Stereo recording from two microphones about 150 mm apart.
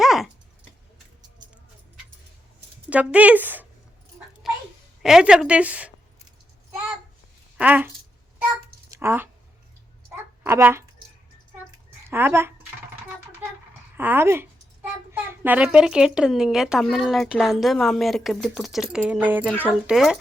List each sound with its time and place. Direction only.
0.0 s a sound: centre (ahead or behind)
2.9 s speech: 10° right (ahead or behind)
5.0 s speech: 5° right (ahead or behind)
7.6 s speech: 10° right (ahead or behind)
8.9 s a sound: 15° right (ahead or behind)
10.4 s speech: 15° right (ahead or behind)
12.0 s speech: 15° right (ahead or behind)
13.4 s a sound: 15° right (ahead or behind)
13.9 s a child's voice: 15° right (ahead or behind)